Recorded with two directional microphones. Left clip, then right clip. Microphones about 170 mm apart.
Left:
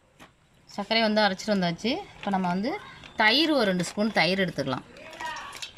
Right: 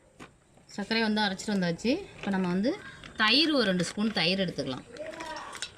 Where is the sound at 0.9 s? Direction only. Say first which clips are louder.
Left 5 dB; 50° left (ahead or behind).